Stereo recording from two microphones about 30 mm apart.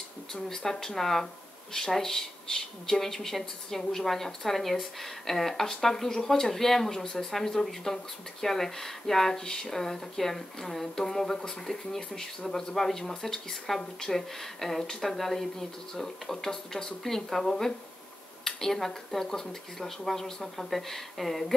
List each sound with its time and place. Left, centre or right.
0.6 s speech: centre
1.2 s a sound: centre
1.9 s speech: centre